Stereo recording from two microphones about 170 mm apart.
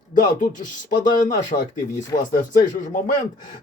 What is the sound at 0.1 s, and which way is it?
Speech, 50° left (ahead or behind).